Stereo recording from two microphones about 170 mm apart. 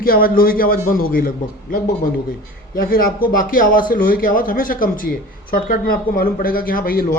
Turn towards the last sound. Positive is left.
turn(degrees=55)  # may be behind; listen again after turning